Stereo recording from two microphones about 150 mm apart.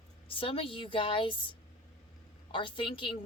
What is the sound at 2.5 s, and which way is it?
Speech, 35° left (ahead or behind).